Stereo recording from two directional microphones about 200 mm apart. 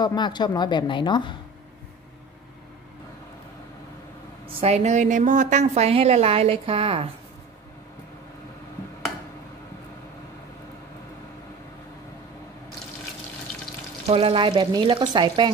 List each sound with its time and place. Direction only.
0.0 s a woman's voice: 20° left (ahead or behind)
4.5 s a woman's voice: 30° right (ahead or behind)
14.0 s speech: 30° right (ahead or behind)